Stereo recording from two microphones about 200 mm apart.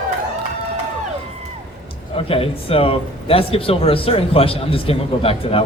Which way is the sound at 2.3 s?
30° left (ahead or behind).